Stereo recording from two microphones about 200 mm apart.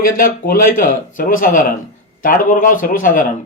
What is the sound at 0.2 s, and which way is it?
Speech, 45° left (ahead or behind).